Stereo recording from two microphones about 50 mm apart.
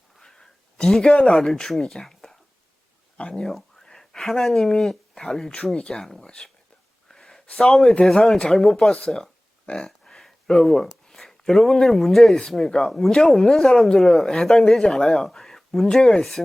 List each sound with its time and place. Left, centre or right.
0.2 s a sound: centre
1.1 s speech: centre
3.2 s speech: left
3.4 s a sound: centre
4.7 s speech: centre
7.1 s a sound: centre
7.4 s a man's voice: left
7.7 s speech: centre
8.9 s speech: centre
12.9 s speech: centre